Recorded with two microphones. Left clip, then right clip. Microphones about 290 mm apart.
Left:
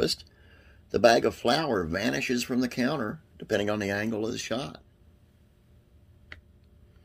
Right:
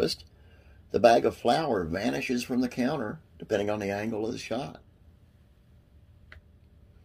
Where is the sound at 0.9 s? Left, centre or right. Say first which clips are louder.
Even; left.